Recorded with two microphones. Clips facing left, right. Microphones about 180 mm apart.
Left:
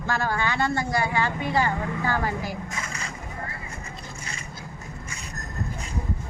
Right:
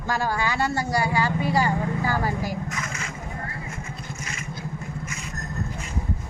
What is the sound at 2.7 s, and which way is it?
Vehicle, 35° left (ahead or behind).